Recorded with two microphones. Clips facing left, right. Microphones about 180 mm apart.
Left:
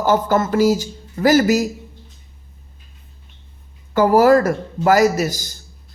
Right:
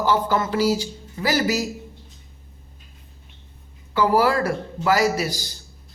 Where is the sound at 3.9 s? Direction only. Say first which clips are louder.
Left 7 dB; 45° left (ahead or behind).